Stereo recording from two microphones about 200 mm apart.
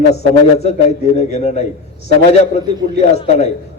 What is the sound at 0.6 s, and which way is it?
A man's voice, 35° left (ahead or behind).